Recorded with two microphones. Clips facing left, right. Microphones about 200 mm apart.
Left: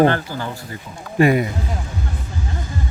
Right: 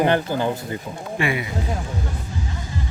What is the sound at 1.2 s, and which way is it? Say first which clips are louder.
Speech: left 9 dB; 45° left (ahead or behind).